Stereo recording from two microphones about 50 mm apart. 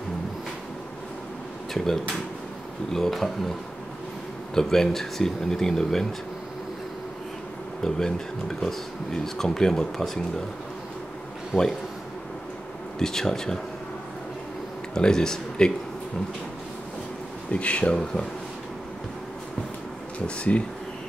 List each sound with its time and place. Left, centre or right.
2.9 s speech: centre
4.6 s speech: centre
7.8 s speech: centre
11.5 s speech: centre
13.0 s speech: centre
15.0 s speech: centre
17.5 s speech: left
20.2 s speech: left